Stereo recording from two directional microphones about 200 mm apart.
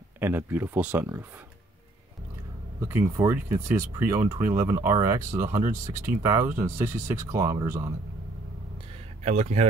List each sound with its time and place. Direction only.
0.2 s speech: 10° right (ahead or behind)
2.8 s speech: 10° right (ahead or behind)
9.2 s speech: 35° right (ahead or behind)